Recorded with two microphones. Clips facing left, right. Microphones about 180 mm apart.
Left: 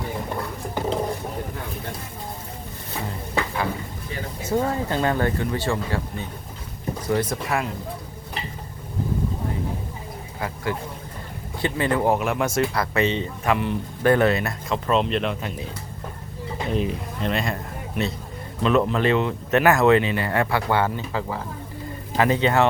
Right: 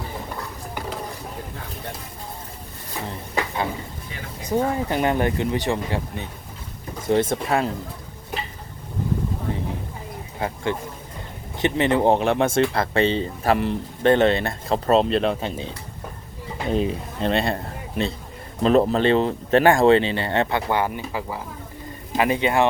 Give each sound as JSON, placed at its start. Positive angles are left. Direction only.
{"t": 0.7, "sound": "a sound", "side_deg": 20}
{"t": 4.4, "sound": "speech", "side_deg": -15}
{"t": 10.4, "sound": "speech", "side_deg": -25}
{"t": 16.7, "sound": "speech", "side_deg": -35}